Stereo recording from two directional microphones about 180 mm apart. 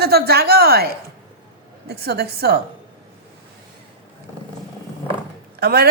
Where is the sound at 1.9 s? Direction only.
60° right (ahead or behind).